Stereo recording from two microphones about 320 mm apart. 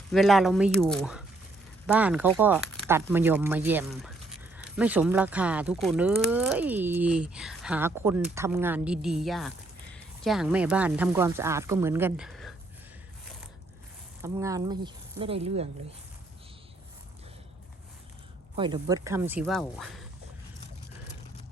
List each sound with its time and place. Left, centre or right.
0.1 s speech: centre
14.2 s speech: centre
18.5 s speech: centre